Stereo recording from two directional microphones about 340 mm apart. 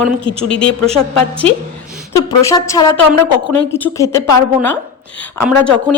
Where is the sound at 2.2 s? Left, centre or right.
Centre.